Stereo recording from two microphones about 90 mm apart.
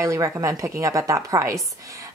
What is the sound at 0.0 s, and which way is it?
A woman's voice, 35° right (ahead or behind).